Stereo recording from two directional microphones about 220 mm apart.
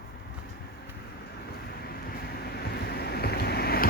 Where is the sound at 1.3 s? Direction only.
45° left (ahead or behind).